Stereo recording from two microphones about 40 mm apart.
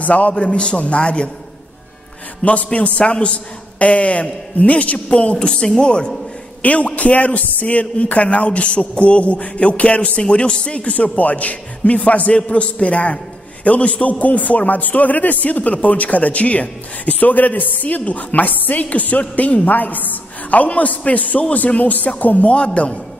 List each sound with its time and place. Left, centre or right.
0.0 s a man's voice: left
2.4 s a man's voice: left
6.6 s a man's voice: left
12.4 s a man's voice: left
22.5 s a man's voice: left